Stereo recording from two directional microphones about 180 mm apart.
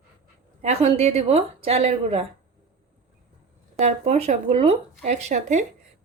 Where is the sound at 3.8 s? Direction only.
40° right (ahead or behind).